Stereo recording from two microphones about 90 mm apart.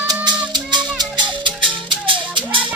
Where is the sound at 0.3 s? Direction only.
55° right (ahead or behind).